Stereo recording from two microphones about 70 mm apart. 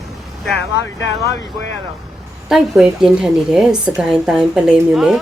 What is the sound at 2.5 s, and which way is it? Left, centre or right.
A woman's voice, centre.